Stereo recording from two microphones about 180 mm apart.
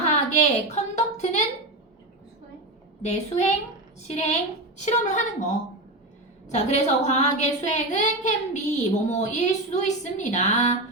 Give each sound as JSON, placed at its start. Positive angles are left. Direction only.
{"t": 0.0, "sound": "a sound", "side_deg": 40}
{"t": 3.0, "sound": "a woman's voice", "side_deg": 40}
{"t": 6.5, "sound": "a woman's voice", "side_deg": 40}